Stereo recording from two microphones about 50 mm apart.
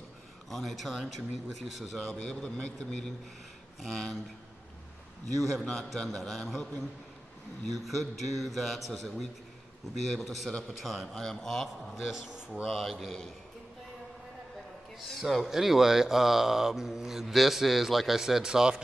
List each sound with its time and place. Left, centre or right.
0.5 s a man's voice: centre
2.0 s a man's voice: left
5.4 s a man's voice: centre
7.7 s a man's voice: centre
11.1 s a man's voice: centre
12.0 s a man's voice: centre
15.0 s speech: centre